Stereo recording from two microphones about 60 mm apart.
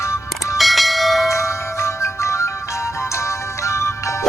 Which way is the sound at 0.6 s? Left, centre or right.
Centre.